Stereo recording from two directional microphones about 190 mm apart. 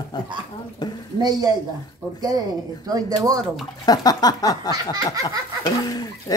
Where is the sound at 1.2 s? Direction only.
20° right (ahead or behind).